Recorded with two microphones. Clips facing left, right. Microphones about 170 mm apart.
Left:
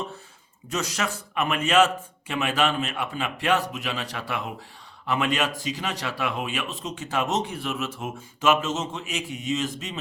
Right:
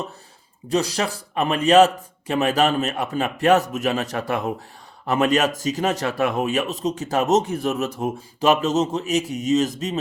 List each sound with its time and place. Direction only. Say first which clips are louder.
0.7 s a man's voice: right 6 dB; 35° right (ahead or behind)